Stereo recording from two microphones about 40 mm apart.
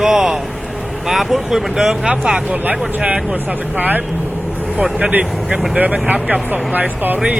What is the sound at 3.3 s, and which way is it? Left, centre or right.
Speech, right.